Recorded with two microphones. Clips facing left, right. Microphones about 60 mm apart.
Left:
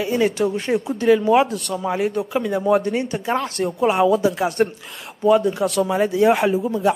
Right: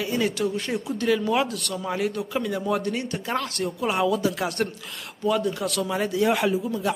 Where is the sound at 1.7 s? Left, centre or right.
Centre.